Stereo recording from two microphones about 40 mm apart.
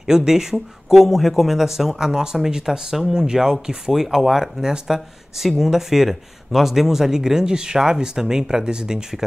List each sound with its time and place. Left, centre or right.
0.0 s speech: centre